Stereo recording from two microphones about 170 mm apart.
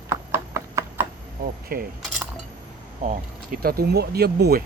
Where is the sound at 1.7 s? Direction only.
60° right (ahead or behind).